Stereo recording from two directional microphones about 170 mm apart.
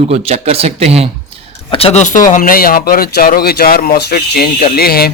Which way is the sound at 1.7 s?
35° left (ahead or behind).